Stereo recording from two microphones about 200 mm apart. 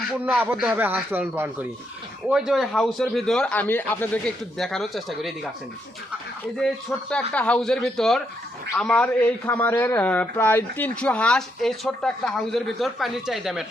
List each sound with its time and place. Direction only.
0.1 s a man's voice: 5° right (ahead or behind)
6.6 s a man's voice: 5° left (ahead or behind)